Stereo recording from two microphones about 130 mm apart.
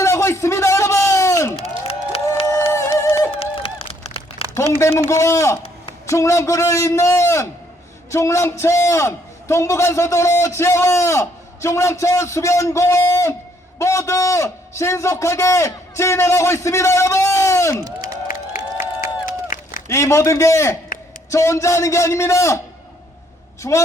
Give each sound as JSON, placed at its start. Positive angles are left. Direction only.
{"t": 0.0, "sound": "a sound", "side_deg": 20}
{"t": 1.9, "sound": "crowd", "side_deg": 50}
{"t": 3.0, "sound": "music", "side_deg": 25}
{"t": 3.3, "sound": "a sound", "side_deg": 50}
{"t": 4.5, "sound": "a man's voice", "side_deg": 20}
{"t": 19.0, "sound": "run", "side_deg": 90}
{"t": 19.9, "sound": "a man's voice", "side_deg": 25}
{"t": 23.6, "sound": "a man's voice", "side_deg": 20}